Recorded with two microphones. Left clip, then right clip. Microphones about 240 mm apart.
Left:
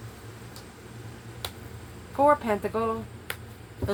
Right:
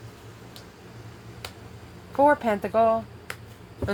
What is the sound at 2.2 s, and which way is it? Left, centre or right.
Speech, right.